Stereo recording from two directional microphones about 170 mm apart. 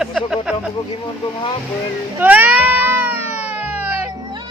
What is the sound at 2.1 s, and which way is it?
Cat, 10° right (ahead or behind).